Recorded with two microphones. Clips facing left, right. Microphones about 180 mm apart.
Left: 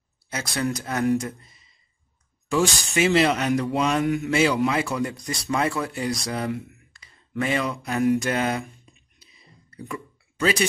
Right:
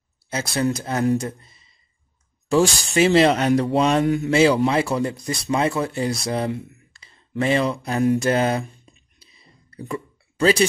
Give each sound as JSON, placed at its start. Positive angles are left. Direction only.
{"t": 0.3, "sound": "speech", "side_deg": -25}